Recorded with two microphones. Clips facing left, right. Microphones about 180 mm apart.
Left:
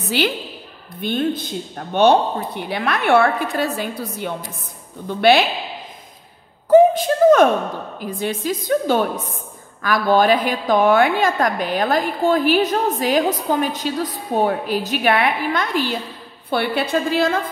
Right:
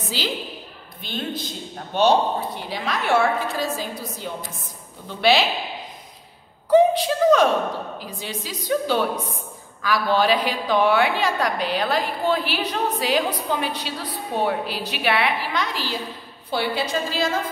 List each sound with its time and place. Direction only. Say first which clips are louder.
0.2 s a woman's voice: left 7 dB; 65° left (ahead or behind)
6.7 s a woman's voice: left 4 dB; 50° left (ahead or behind)